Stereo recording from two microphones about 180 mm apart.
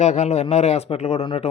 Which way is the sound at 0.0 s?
40° left (ahead or behind).